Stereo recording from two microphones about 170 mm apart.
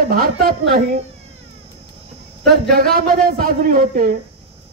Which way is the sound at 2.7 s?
60° right (ahead or behind).